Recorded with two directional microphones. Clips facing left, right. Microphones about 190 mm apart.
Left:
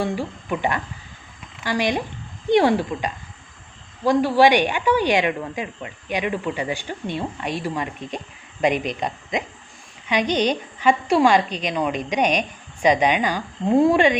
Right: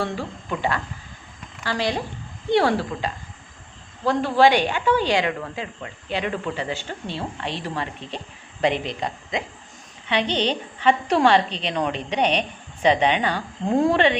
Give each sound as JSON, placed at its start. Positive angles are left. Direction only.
{"t": 0.0, "sound": "a woman's voice", "side_deg": 15}